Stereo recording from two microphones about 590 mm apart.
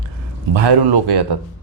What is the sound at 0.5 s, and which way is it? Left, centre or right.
Speech, right.